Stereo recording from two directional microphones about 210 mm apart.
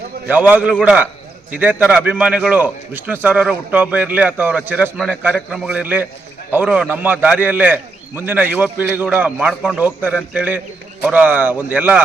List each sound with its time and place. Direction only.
0.3 s a man's voice: 5° right (ahead or behind)